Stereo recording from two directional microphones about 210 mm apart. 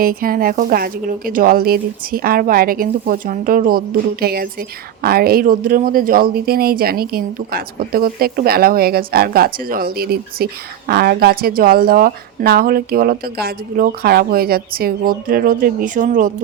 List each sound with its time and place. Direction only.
0.0 s speech: 45° right (ahead or behind)